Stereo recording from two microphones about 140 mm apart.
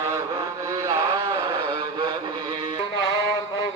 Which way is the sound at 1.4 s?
35° right (ahead or behind).